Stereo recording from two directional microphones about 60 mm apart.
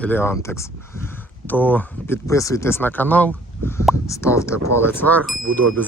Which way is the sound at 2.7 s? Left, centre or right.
Left.